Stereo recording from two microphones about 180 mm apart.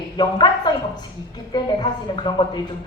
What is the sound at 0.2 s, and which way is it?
A woman's voice, 25° left (ahead or behind).